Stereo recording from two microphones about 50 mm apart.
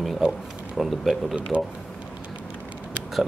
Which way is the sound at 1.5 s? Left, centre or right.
Right.